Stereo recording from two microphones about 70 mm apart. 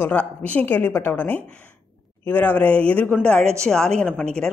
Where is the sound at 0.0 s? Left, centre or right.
Left.